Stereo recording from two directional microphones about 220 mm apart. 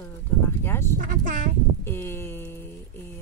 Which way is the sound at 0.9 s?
35° right (ahead or behind).